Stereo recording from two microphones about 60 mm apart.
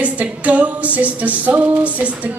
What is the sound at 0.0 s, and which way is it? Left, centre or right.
Music, right.